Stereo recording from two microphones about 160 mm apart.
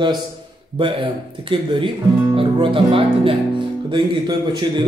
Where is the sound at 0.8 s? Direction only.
30° right (ahead or behind).